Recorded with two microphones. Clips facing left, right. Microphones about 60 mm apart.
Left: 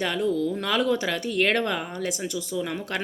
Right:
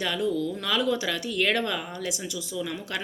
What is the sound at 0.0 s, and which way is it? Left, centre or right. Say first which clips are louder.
Speech: left 2 dB; left.